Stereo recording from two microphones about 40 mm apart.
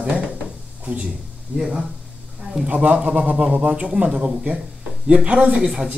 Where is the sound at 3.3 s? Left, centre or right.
Right.